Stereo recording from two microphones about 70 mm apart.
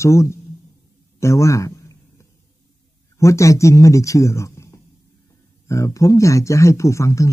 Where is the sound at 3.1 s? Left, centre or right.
Left.